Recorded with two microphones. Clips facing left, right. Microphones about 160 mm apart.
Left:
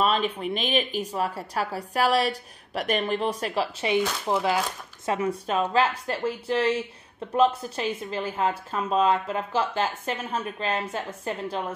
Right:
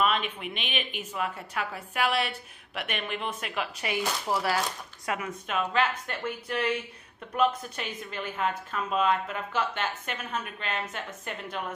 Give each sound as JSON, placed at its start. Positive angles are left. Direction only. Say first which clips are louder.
{"t": 0.0, "sound": "a woman's voice", "louder": "left 4 dB", "side_deg": 35}